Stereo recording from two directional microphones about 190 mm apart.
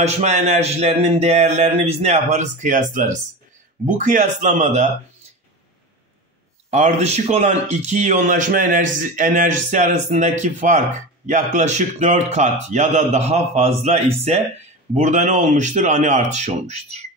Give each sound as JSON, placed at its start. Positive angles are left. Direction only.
{"t": 0.0, "sound": "speech", "side_deg": -35}
{"t": 6.7, "sound": "speech", "side_deg": -35}